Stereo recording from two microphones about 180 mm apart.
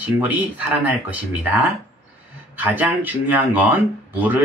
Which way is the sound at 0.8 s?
10° right (ahead or behind).